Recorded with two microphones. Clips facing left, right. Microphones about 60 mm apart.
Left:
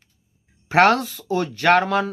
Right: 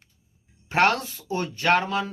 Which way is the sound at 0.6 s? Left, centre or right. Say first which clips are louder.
Left 6 dB; left.